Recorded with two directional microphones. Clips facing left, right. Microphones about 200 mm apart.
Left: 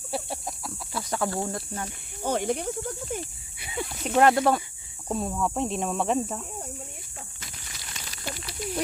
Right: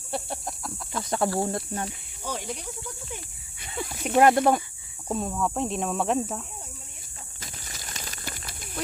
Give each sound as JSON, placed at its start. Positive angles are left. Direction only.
{"t": 0.1, "sound": "a sound", "side_deg": 0}
{"t": 1.4, "sound": "speech", "side_deg": -30}
{"t": 2.2, "sound": "speech", "side_deg": 55}
{"t": 3.6, "sound": "snake", "side_deg": 0}
{"t": 4.1, "sound": "speech", "side_deg": -15}
{"t": 5.0, "sound": "speech", "side_deg": 0}
{"t": 7.4, "sound": "a sound", "side_deg": -40}